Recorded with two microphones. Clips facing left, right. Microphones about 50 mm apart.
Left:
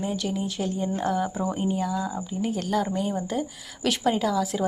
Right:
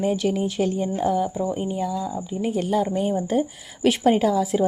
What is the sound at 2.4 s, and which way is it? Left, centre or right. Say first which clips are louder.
Speech: right 4 dB; centre.